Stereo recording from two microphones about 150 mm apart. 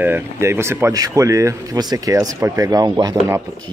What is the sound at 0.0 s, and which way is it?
Speech, 15° right (ahead or behind).